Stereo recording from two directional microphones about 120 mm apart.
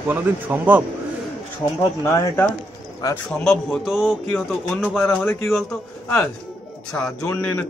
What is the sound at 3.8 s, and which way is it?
Speech, 5° right (ahead or behind).